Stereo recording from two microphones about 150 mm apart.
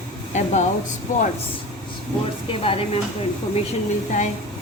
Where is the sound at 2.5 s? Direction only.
40° left (ahead or behind).